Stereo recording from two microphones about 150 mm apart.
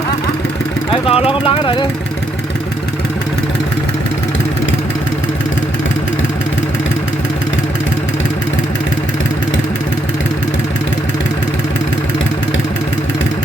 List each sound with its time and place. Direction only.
0.9 s speech: 40° left (ahead or behind)